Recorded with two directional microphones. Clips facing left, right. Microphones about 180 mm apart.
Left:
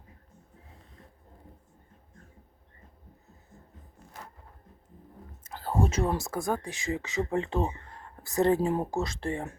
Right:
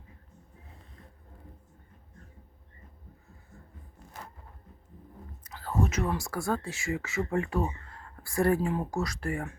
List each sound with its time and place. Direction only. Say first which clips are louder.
5.5 s speech: left 2 dB; 30° left (ahead or behind)